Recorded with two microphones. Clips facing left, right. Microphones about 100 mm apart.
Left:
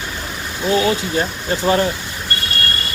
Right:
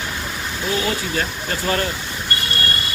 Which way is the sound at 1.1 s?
25° left (ahead or behind).